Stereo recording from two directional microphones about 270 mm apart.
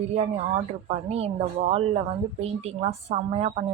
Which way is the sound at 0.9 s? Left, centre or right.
Right.